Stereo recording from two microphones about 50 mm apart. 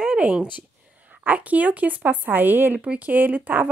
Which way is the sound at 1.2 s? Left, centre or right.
Right.